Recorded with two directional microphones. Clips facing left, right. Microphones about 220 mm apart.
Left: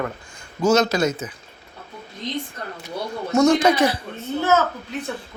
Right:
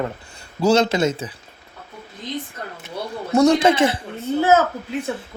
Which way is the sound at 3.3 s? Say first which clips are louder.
Right 1 dB; 35° right (ahead or behind).